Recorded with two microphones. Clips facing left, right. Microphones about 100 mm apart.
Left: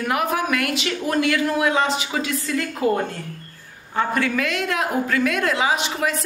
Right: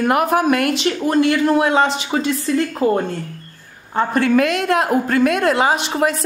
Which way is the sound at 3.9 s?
40° right (ahead or behind).